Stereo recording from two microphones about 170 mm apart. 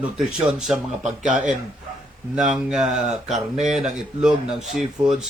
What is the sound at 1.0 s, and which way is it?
Speech, 45° right (ahead or behind).